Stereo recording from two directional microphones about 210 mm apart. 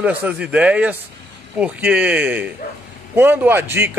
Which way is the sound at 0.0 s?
10° right (ahead or behind).